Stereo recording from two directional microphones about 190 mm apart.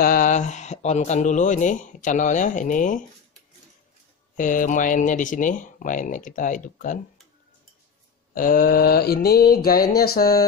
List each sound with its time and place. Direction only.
0.0 s speech: 45° left (ahead or behind)
4.4 s speech: 45° left (ahead or behind)
8.4 s speech: 45° left (ahead or behind)